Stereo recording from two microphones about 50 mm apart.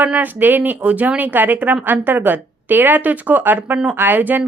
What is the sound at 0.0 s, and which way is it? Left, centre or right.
A woman's voice, right.